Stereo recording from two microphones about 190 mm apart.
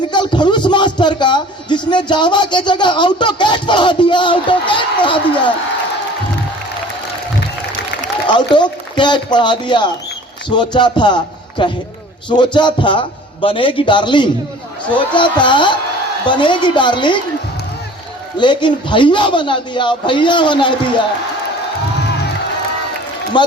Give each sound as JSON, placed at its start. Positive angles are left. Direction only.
{"t": 0.1, "sound": "speech", "side_deg": 25}
{"t": 8.3, "sound": "speech", "side_deg": 25}
{"t": 18.3, "sound": "speech", "side_deg": 25}